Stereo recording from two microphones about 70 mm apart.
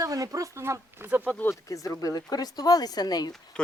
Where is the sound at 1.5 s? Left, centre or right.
Left.